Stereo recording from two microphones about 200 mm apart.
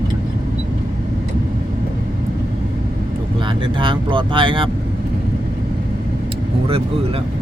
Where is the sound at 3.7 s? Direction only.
25° right (ahead or behind).